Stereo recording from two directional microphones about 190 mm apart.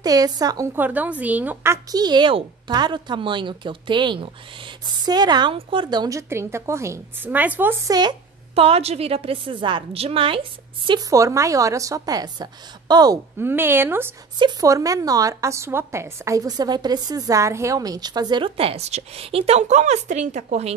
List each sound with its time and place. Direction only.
0.0 s a woman's voice: 20° right (ahead or behind)
0.8 s a woman's voice: 10° right (ahead or behind); by 20.7 s 35° right (ahead or behind)